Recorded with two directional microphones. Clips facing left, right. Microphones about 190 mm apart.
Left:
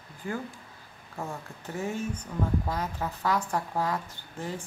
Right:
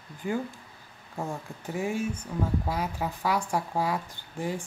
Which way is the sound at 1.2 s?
15° right (ahead or behind).